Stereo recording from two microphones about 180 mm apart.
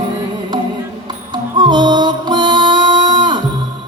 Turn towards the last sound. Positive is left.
turn(degrees=-25)  # may be behind; listen again after turning